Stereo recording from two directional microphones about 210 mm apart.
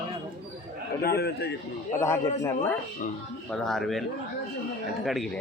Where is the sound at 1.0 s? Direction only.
50° left (ahead or behind).